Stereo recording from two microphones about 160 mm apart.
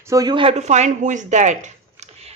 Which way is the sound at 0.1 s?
25° right (ahead or behind).